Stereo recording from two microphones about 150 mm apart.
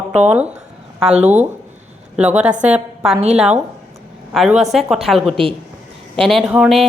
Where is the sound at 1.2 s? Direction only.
50° right (ahead or behind).